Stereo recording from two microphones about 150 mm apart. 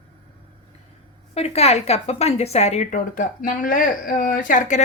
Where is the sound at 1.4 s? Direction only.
45° left (ahead or behind).